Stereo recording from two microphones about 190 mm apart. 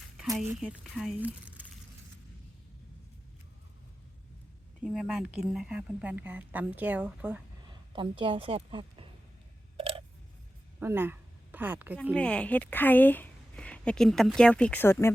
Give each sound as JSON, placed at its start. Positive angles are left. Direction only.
{"t": 0.3, "sound": "speech", "side_deg": -5}
{"t": 4.8, "sound": "speech", "side_deg": 0}
{"t": 7.9, "sound": "a woman's voice", "side_deg": -25}
{"t": 9.7, "sound": "a sound", "side_deg": -30}
{"t": 10.8, "sound": "speech", "side_deg": -10}
{"t": 12.1, "sound": "speech", "side_deg": 5}